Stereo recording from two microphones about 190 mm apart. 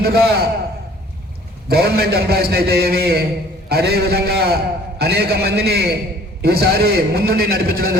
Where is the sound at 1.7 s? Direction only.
55° right (ahead or behind).